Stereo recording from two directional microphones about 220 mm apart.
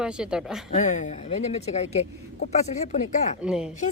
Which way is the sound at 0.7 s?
35° left (ahead or behind).